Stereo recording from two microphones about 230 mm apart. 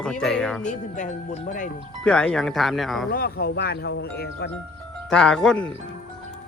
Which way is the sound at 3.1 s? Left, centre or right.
Left.